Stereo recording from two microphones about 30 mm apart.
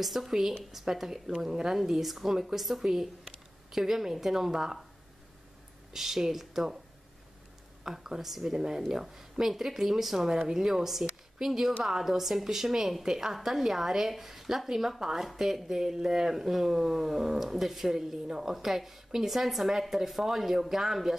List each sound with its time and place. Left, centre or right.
0.0 s a woman's voice: centre
1.8 s a woman's voice: centre
5.9 s a woman's voice: centre
7.8 s a woman's voice: centre
17.9 s a woman's voice: centre